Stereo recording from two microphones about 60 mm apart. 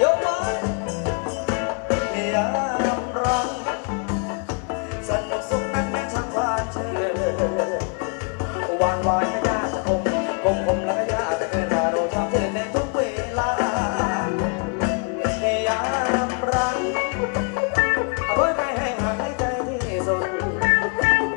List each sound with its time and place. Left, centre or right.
0.0 s music: centre